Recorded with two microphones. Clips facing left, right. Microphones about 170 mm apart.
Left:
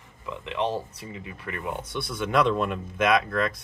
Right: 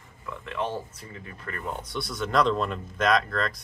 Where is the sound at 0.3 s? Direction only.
20° left (ahead or behind).